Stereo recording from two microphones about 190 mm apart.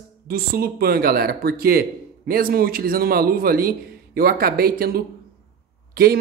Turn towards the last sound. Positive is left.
turn(degrees=-55)  # may be behind; listen again after turning